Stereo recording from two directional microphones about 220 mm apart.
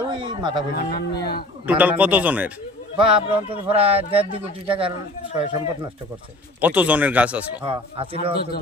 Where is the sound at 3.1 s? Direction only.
25° right (ahead or behind).